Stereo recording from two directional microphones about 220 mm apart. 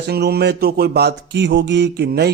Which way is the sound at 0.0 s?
45° right (ahead or behind).